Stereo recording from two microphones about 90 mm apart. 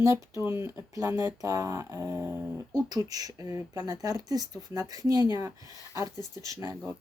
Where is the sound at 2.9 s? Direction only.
45° right (ahead or behind).